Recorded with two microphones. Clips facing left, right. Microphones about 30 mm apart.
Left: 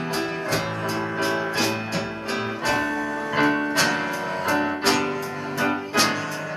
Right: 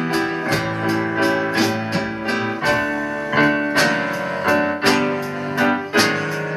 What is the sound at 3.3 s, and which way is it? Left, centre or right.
Music, right.